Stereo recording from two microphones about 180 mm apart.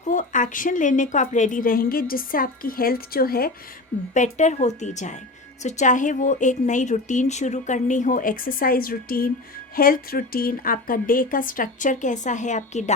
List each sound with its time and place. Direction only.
0.1 s a woman's voice: 45° left (ahead or behind)
4.1 s a woman's voice: 40° left (ahead or behind)